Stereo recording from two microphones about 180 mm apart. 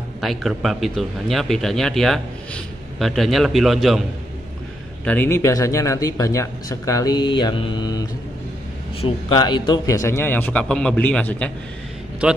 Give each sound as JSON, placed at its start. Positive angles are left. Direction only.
{"t": 0.2, "sound": "speech", "side_deg": 0}
{"t": 5.0, "sound": "speech", "side_deg": 10}
{"t": 12.2, "sound": "a man's voice", "side_deg": -5}